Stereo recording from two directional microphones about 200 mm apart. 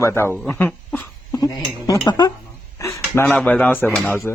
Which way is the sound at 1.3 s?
20° left (ahead or behind).